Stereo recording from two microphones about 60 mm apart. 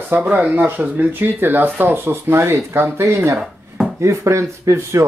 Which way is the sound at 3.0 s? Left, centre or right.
Right.